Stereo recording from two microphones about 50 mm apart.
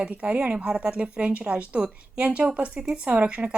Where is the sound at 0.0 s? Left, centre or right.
Right.